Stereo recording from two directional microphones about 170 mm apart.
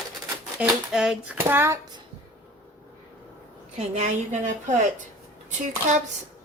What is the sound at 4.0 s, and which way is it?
Speech, 45° right (ahead or behind).